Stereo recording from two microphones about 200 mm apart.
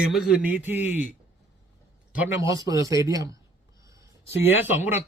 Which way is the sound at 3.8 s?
15° right (ahead or behind).